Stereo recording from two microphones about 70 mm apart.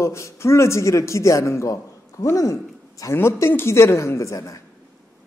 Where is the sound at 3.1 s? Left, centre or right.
Left.